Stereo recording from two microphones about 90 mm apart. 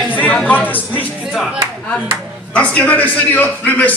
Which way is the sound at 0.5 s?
20° left (ahead or behind).